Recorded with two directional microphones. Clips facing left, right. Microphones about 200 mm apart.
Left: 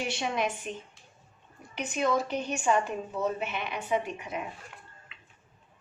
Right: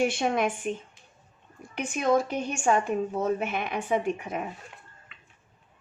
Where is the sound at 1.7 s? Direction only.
50° right (ahead or behind).